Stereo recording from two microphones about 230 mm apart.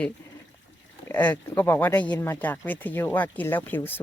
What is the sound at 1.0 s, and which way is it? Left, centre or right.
Speech, centre.